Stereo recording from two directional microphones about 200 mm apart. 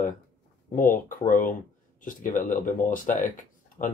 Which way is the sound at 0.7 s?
40° left (ahead or behind).